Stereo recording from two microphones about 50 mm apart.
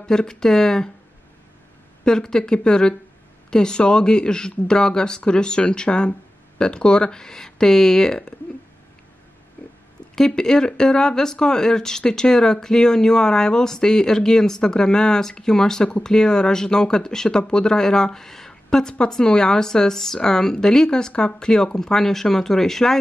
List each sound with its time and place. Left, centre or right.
0.0 s speech: centre
2.0 s speech: centre
10.1 s speech: centre